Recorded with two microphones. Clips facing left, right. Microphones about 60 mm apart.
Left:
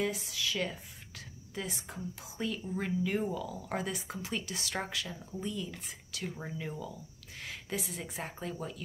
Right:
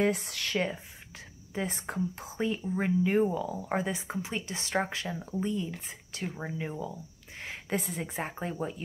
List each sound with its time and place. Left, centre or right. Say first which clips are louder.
0.0 s speech: right 5 dB; right
1.5 s a woman's voice: right 6 dB; right
1.8 s speech: right 9 dB; right